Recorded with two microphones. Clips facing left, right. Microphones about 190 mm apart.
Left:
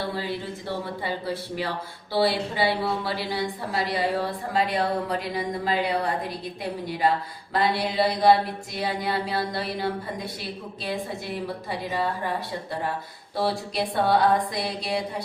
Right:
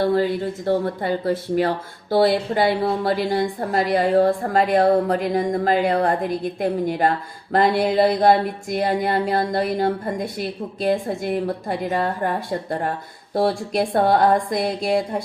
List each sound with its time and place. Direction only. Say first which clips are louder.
0.0 s speech: right 10 dB; 50° right (ahead or behind)